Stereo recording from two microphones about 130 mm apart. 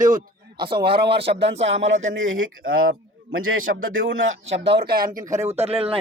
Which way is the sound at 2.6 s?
90° right.